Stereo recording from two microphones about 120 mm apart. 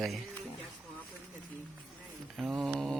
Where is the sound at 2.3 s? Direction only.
Centre (ahead or behind).